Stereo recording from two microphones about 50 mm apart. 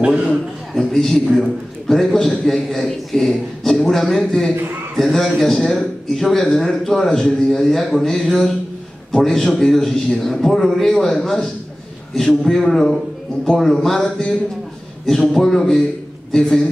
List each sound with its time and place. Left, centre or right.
0.0 s a man's voice: centre
0.7 s a man's voice: centre
15.0 s a man's voice: centre